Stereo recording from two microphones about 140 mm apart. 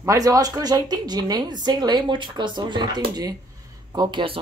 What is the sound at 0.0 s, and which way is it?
A woman's voice, 25° right (ahead or behind).